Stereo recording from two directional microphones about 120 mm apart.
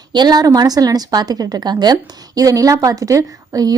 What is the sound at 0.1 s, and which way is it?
A woman's voice, 35° right (ahead or behind).